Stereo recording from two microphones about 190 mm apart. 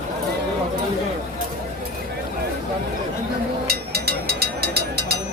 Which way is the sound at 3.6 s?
55° right (ahead or behind).